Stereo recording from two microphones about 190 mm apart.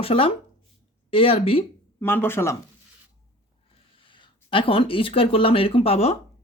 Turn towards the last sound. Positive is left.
turn(degrees=30)  # may be behind; listen again after turning